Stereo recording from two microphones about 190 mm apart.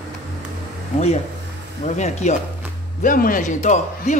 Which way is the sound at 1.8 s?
40° left (ahead or behind).